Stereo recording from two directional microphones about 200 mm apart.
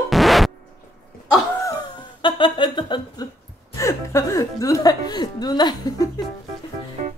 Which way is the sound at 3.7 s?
15° left (ahead or behind).